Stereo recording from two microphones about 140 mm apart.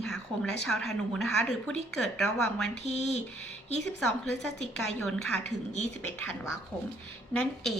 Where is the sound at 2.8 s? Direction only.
55° left (ahead or behind).